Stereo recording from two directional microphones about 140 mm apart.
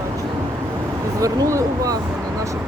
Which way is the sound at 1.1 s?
25° right (ahead or behind).